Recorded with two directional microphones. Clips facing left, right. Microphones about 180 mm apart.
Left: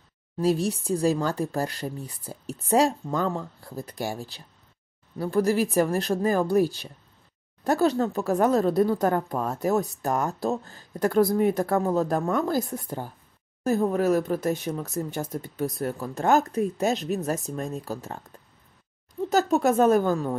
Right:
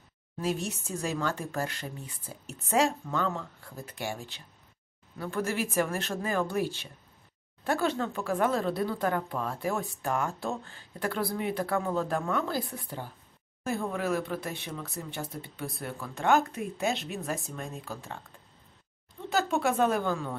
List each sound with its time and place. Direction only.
0.4 s speech: 35° left (ahead or behind)
19.2 s speech: 40° left (ahead or behind)